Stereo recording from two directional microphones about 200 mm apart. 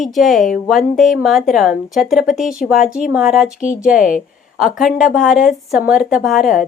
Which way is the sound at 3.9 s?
40° left (ahead or behind).